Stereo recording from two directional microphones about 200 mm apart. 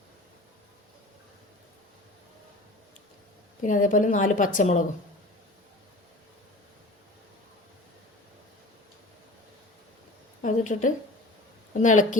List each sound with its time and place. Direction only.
3.6 s a woman's voice: 40° left (ahead or behind)
10.4 s a woman's voice: 40° left (ahead or behind)